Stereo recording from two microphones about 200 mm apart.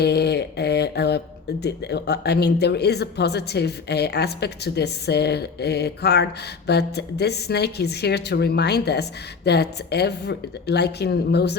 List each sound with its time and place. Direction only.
0.0 s speech: 55° left (ahead or behind)